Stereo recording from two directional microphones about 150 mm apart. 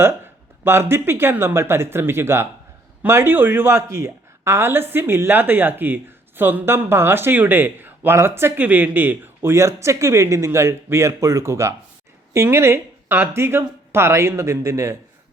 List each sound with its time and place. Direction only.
0.6 s a woman's voice: 15° right (ahead or behind)